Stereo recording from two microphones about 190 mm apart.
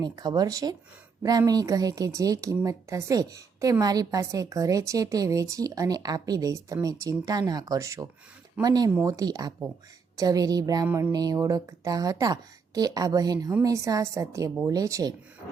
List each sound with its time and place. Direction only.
0.0 s a woman's voice: 20° right (ahead or behind)
10.8 s a woman's voice: 10° right (ahead or behind)
11.1 s a woman's voice: 20° right (ahead or behind)